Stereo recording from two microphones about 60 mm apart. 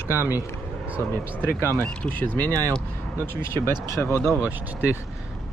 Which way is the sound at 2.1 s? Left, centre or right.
Left.